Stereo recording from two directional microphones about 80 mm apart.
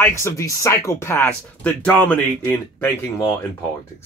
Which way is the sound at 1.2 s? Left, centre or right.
Centre.